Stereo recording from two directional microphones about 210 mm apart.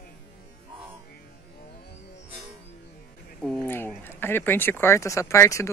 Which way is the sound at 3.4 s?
5° left (ahead or behind).